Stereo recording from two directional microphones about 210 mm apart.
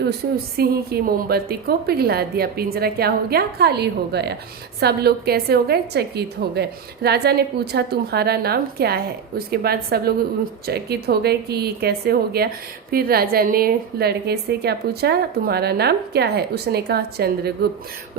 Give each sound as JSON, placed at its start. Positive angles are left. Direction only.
{"t": 0.5, "sound": "a woman's voice", "side_deg": -45}